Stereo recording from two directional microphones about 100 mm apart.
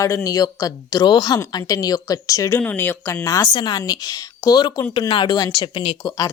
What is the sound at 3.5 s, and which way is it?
A woman's voice, 45° left (ahead or behind).